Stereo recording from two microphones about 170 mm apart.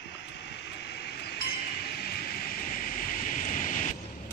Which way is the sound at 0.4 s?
85° left.